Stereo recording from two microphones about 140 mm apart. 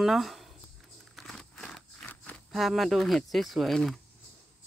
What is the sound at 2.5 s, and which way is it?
Speech, centre (ahead or behind).